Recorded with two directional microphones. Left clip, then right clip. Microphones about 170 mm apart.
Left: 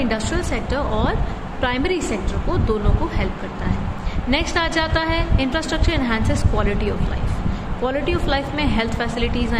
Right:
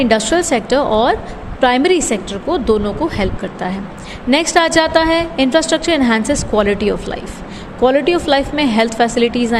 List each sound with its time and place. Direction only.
0.0 s a woman's voice: 50° right (ahead or behind)